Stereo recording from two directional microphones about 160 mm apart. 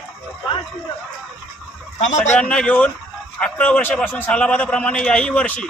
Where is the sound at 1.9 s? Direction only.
50° left (ahead or behind).